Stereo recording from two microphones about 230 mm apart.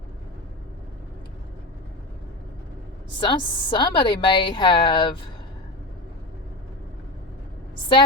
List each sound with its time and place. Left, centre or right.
3.2 s a woman's voice: left